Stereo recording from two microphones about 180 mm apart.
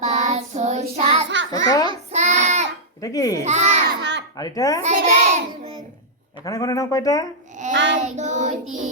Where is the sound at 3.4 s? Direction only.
40° right (ahead or behind).